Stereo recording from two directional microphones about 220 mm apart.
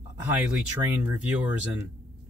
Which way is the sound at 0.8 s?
10° right (ahead or behind).